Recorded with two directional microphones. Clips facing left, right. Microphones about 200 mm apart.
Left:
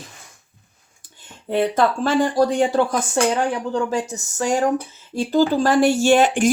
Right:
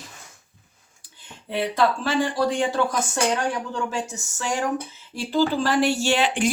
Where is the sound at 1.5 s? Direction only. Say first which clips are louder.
Left 4 dB; 50° left (ahead or behind).